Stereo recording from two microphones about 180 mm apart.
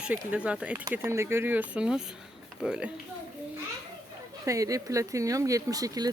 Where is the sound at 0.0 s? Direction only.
5° right (ahead or behind).